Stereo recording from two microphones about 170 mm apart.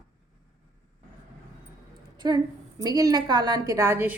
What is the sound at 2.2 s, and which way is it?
A woman's voice, 25° right (ahead or behind).